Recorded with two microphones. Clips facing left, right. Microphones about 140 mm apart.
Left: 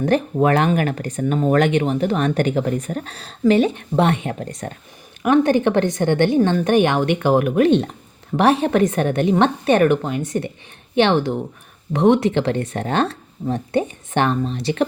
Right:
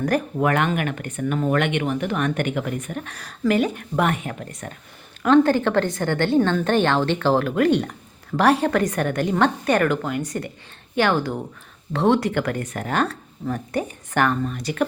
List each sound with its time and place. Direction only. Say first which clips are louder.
0.0 s speech: left 4 dB; 30° left (ahead or behind)
5.2 s a woman's voice: left 1 dB; 15° left (ahead or behind)